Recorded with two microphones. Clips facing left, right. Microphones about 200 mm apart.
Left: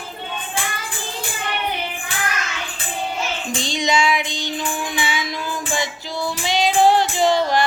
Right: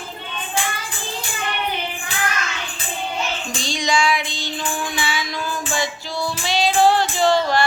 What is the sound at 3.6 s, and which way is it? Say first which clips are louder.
Child singing: left 1 dB; 20° left (ahead or behind).